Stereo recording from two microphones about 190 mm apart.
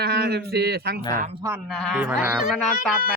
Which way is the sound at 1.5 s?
Centre (ahead or behind).